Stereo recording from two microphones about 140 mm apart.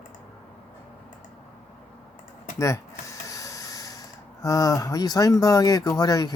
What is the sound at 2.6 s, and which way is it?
Speech, 20° left (ahead or behind).